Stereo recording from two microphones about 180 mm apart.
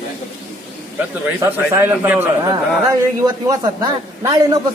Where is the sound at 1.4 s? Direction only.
10° right (ahead or behind).